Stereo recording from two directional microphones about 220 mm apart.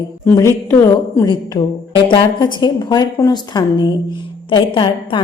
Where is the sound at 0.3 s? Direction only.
10° left (ahead or behind).